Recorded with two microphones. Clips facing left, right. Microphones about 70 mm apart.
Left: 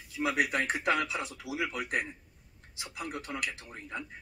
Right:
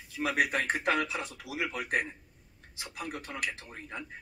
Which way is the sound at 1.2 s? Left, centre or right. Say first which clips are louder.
Left 1 dB; left.